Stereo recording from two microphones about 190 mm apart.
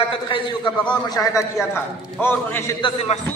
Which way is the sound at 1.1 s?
15° left (ahead or behind).